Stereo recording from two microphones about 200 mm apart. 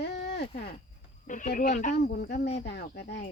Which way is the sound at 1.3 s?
40° left (ahead or behind).